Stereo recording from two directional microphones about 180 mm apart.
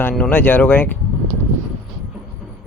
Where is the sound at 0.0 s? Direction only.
10° left (ahead or behind).